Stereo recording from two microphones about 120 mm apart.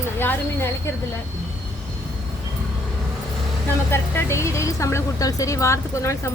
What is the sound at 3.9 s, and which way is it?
Speech, 20° left (ahead or behind).